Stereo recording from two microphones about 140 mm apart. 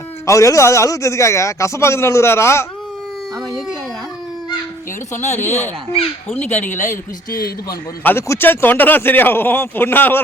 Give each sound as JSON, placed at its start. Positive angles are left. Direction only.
{"t": 0.3, "sound": "a man's voice", "side_deg": 20}
{"t": 5.3, "sound": "speech", "side_deg": 15}
{"t": 6.7, "sound": "a woman's voice", "side_deg": 65}
{"t": 7.3, "sound": "a man's voice", "side_deg": 90}
{"t": 8.0, "sound": "speech", "side_deg": 15}